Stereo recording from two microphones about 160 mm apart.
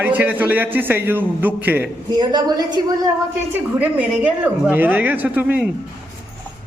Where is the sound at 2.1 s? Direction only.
25° right (ahead or behind).